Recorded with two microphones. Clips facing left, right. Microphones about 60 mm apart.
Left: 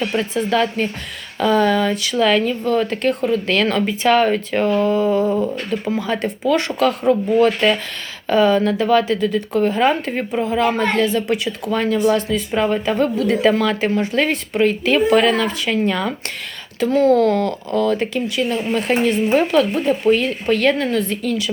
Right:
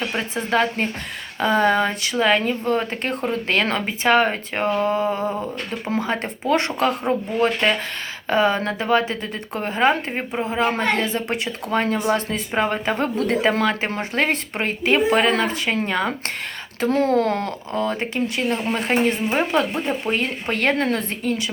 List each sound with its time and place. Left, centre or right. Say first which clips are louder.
0.0 s speech: left 5 dB; right
20.2 s speech: left 5 dB; right